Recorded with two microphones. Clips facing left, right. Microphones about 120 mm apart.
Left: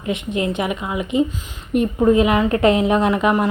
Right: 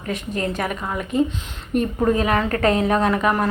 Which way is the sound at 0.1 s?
20° left (ahead or behind).